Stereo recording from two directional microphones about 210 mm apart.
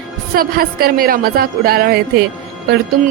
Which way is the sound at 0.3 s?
45° right (ahead or behind).